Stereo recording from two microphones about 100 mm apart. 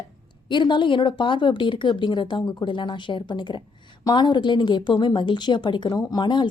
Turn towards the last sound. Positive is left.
turn(degrees=50)  # may be behind; listen again after turning